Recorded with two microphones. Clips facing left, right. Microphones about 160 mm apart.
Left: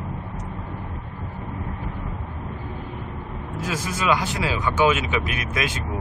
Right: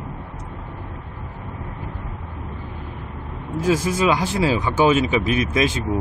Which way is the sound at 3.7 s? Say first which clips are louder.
Right 5 dB; 30° right (ahead or behind).